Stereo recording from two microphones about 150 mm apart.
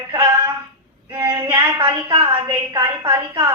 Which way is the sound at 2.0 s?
25° right (ahead or behind).